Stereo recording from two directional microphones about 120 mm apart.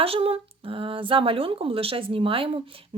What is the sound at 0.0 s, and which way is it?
Speech, 50° right (ahead or behind).